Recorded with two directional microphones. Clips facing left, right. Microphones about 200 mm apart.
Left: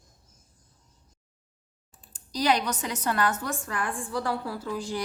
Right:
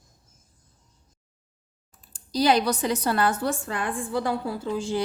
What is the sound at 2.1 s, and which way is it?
A woman's voice, 35° right (ahead or behind).